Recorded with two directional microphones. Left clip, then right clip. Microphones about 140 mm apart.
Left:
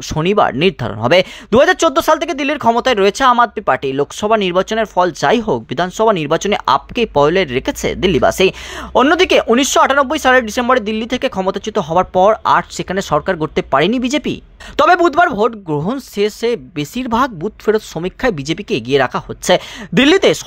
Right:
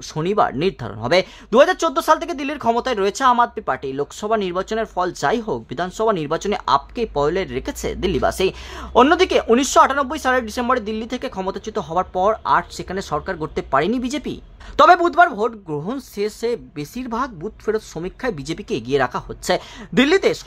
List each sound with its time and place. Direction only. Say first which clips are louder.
0.1 s speech: left 5 dB; 30° left (ahead or behind)